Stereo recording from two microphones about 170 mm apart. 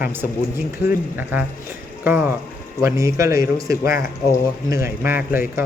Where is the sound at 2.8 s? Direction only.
20° right (ahead or behind).